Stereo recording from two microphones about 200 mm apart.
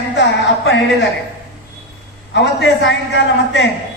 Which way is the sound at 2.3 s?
60° left (ahead or behind).